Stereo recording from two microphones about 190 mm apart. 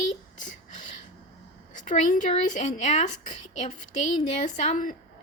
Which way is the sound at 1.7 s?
40° left (ahead or behind).